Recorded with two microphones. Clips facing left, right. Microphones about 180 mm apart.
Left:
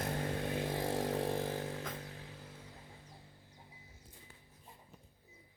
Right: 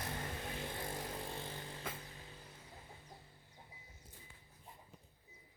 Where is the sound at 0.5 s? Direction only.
75° left (ahead or behind).